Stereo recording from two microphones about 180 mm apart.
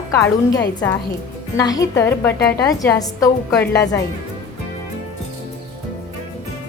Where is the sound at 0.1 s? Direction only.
20° left (ahead or behind).